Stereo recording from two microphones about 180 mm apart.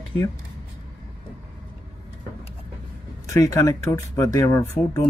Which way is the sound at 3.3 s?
15° left (ahead or behind).